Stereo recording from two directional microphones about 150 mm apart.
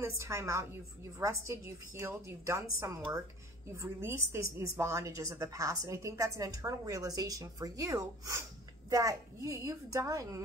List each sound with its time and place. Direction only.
0.0 s a woman's voice: 15° right (ahead or behind)